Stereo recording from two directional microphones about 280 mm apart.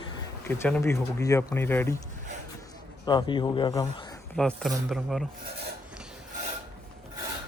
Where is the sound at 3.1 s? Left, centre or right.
Centre.